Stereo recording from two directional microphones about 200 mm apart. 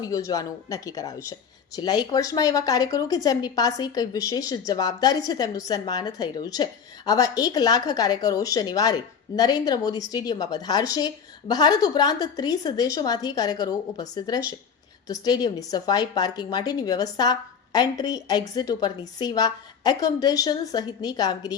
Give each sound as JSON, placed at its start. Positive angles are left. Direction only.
{"t": 0.0, "sound": "speech", "side_deg": 15}